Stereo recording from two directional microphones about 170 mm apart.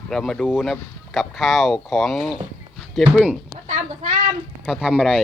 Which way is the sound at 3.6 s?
45° right (ahead or behind).